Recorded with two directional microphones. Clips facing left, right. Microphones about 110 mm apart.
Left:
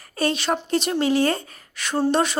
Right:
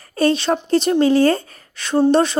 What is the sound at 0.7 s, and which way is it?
A woman's voice, 30° right (ahead or behind).